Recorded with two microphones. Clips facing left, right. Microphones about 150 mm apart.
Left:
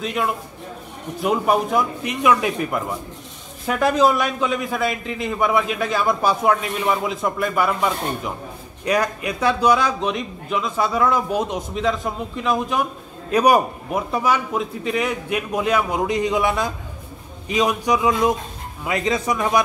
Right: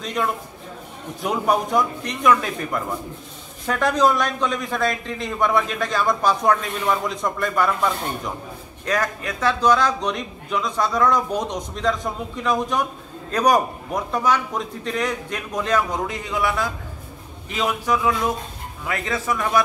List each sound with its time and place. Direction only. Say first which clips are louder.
0.0 s a man's voice: left 1 dB; 5° left (ahead or behind)